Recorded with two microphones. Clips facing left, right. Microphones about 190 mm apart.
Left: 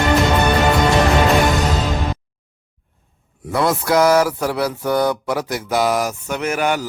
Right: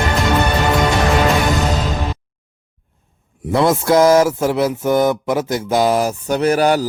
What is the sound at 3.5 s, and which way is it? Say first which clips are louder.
Mantra: right 4 dB; 25° right (ahead or behind).